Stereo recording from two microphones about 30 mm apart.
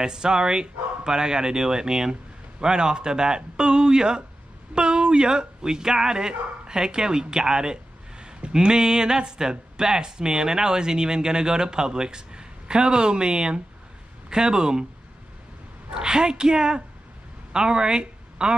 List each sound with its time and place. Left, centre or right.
0.0 s speech: right
15.9 s a woman's voice: right